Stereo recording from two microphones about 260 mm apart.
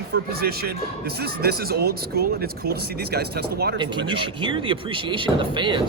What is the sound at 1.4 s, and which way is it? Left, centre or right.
Speech, right.